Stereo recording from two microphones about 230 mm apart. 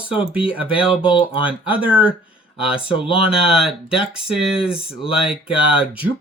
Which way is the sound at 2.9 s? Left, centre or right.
Left.